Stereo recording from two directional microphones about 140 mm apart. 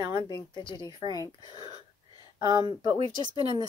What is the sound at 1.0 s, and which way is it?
Speech, 25° right (ahead or behind).